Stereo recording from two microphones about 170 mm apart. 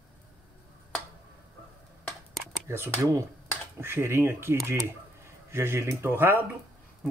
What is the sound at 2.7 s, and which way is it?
Speech, 15° right (ahead or behind).